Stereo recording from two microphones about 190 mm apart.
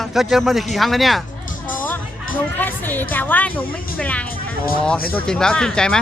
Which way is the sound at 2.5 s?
10° left (ahead or behind).